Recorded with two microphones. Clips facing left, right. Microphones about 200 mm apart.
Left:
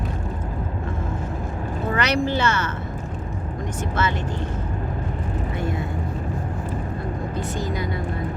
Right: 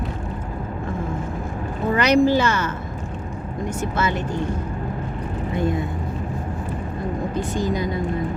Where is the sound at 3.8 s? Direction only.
10° right (ahead or behind).